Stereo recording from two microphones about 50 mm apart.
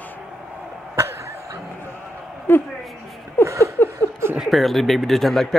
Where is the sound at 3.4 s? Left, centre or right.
Right.